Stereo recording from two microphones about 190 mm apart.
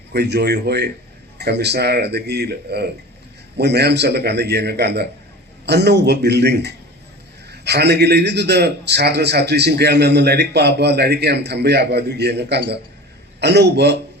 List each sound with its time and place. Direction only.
0.1 s a man's voice: 60° right (ahead or behind)